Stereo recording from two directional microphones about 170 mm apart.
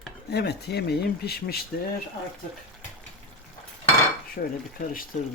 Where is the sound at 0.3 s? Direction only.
75° left (ahead or behind).